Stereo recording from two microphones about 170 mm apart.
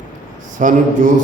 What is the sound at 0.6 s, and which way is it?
Speech, 50° right (ahead or behind).